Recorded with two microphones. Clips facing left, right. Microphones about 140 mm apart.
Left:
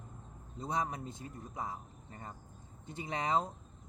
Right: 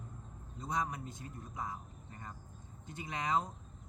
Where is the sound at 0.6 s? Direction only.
25° left (ahead or behind).